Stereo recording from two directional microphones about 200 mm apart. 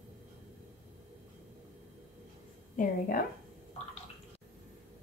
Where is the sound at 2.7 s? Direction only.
45° left (ahead or behind).